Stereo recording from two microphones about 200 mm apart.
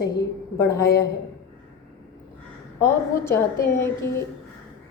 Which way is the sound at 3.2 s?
10° left (ahead or behind).